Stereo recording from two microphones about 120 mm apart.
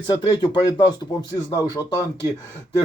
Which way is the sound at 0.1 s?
30° left (ahead or behind).